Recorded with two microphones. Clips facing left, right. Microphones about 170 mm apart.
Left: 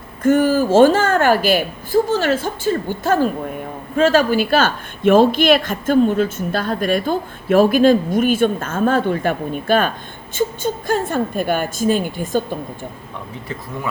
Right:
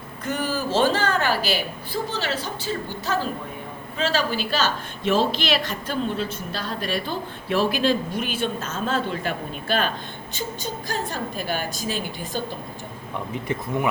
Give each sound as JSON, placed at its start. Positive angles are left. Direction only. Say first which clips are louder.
{"t": 0.2, "sound": "a woman's voice", "louder": "left 12 dB", "side_deg": 50}